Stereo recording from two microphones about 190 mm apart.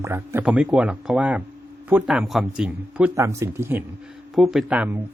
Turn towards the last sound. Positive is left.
turn(degrees=-5)  # may be behind; listen again after turning